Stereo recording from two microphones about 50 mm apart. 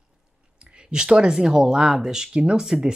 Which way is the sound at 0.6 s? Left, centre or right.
Centre.